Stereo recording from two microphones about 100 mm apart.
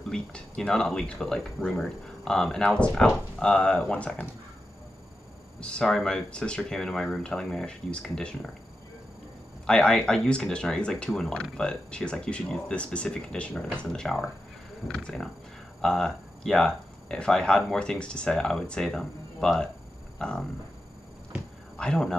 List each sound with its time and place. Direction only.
0.1 s speech: 10° left (ahead or behind)
5.6 s speech: 10° left (ahead or behind)
9.7 s speech: 10° left (ahead or behind)
21.3 s a sound: 10° right (ahead or behind)
21.7 s a man's voice: 10° left (ahead or behind)